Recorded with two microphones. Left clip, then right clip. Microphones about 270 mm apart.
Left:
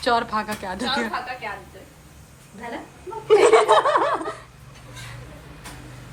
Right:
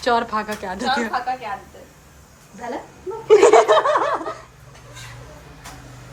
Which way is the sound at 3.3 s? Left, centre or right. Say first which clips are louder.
Right 3 dB; centre.